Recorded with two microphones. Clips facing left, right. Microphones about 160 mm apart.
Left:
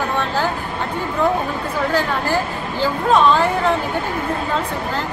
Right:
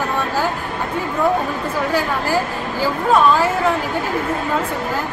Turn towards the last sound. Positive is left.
turn(degrees=-5)  # may be behind; listen again after turning